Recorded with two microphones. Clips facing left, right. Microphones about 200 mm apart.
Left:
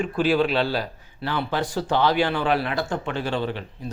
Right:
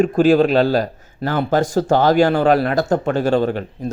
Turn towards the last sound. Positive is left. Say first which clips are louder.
# right 9 dB
turn(degrees=-45)  # may be behind; listen again after turning